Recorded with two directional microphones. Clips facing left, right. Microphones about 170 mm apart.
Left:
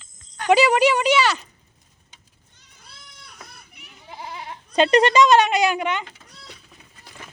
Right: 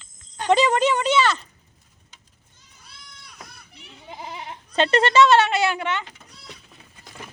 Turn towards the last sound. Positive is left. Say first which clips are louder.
# left 2 dB
turn(degrees=15)  # may be behind; listen again after turning